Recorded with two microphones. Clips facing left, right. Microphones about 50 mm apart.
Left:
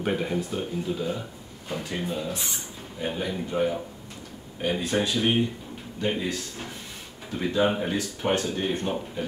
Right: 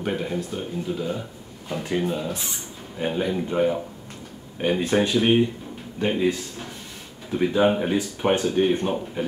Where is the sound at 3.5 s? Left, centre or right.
Right.